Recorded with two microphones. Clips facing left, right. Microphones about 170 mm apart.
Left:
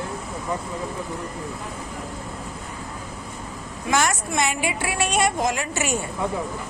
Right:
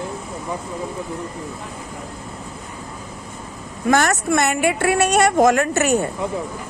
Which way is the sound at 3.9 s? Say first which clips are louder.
Right 5 dB; 60° right (ahead or behind).